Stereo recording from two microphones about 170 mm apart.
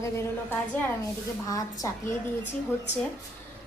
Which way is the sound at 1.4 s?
20° left (ahead or behind).